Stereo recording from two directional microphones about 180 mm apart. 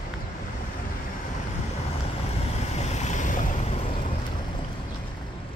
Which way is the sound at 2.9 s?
40° left (ahead or behind).